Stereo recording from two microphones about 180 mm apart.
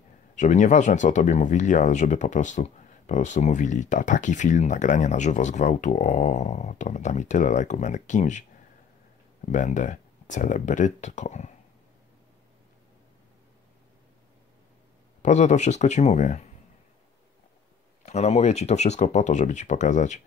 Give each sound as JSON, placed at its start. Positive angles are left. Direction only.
{"t": 0.4, "sound": "speech", "side_deg": 40}
{"t": 9.5, "sound": "speech", "side_deg": 45}
{"t": 15.2, "sound": "speech", "side_deg": 40}
{"t": 18.0, "sound": "speech", "side_deg": 40}